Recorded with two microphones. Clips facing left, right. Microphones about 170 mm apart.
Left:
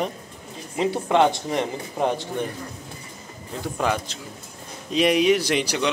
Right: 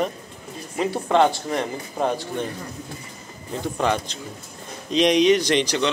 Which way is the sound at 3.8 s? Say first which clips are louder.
Right 1 dB; 5° left (ahead or behind).